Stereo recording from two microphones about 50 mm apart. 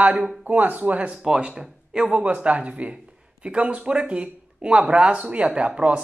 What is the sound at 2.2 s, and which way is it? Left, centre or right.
Speech, right.